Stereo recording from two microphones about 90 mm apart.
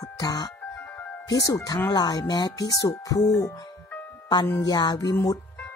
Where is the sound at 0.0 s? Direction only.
50° left (ahead or behind).